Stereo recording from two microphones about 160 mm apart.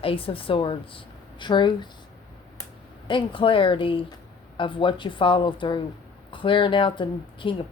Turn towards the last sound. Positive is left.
turn(degrees=30)  # may be behind; listen again after turning